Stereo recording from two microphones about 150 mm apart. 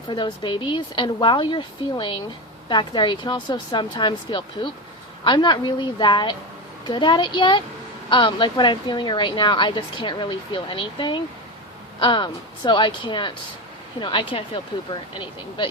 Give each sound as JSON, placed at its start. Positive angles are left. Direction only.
{"t": 0.1, "sound": "speech", "side_deg": 30}